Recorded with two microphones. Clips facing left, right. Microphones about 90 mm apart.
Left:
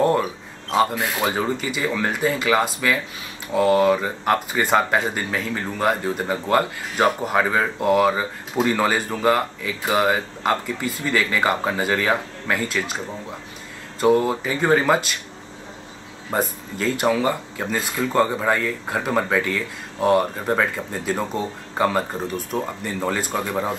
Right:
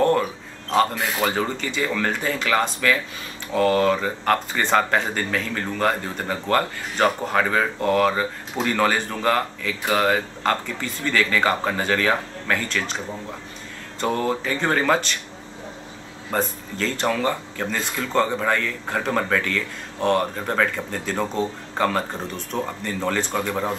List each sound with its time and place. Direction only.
0.0 s speech: 10° left (ahead or behind)
16.3 s speech: 10° left (ahead or behind)